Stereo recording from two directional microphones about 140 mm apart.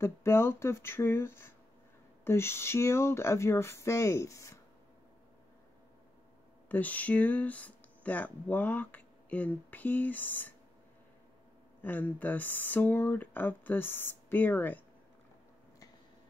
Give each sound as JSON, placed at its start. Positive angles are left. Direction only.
{"t": 0.0, "sound": "speech", "side_deg": 20}
{"t": 6.7, "sound": "speech", "side_deg": 10}
{"t": 11.8, "sound": "speech", "side_deg": 10}